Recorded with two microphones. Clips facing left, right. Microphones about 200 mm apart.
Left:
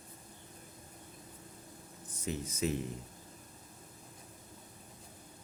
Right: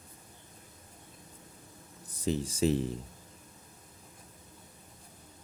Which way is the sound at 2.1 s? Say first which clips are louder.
Right 7 dB; 35° right (ahead or behind).